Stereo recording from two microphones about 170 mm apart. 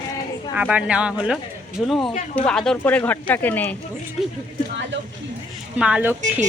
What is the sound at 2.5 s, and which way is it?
Speech, 5° left (ahead or behind).